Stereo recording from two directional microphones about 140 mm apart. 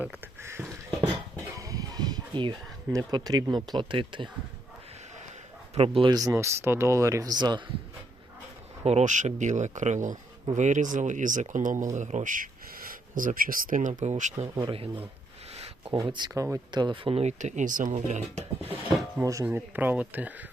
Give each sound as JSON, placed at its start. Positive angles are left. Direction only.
{"t": 0.0, "sound": "a sound", "side_deg": -15}
{"t": 1.5, "sound": "speech", "side_deg": -25}
{"t": 5.7, "sound": "a man's voice", "side_deg": -45}
{"t": 6.1, "sound": "speech", "side_deg": -20}
{"t": 8.8, "sound": "speech", "side_deg": -50}
{"t": 14.5, "sound": "speech", "side_deg": -35}
{"t": 15.5, "sound": "a sound", "side_deg": -50}
{"t": 15.9, "sound": "speech", "side_deg": -30}
{"t": 19.2, "sound": "speech", "side_deg": -25}
{"t": 19.5, "sound": "speech", "side_deg": -15}